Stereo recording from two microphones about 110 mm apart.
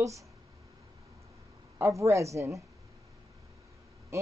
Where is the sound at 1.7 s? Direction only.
25° right (ahead or behind).